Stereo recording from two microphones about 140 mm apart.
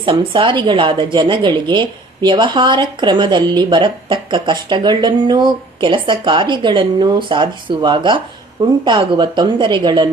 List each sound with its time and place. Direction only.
0.0 s speech: 35° right (ahead or behind)